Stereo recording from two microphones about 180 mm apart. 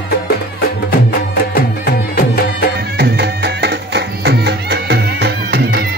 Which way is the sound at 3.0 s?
65° right (ahead or behind).